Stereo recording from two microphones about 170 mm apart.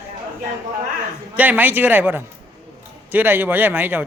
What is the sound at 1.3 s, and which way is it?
A man's voice, 10° right (ahead or behind).